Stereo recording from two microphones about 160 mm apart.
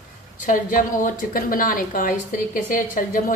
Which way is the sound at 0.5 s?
55° left (ahead or behind).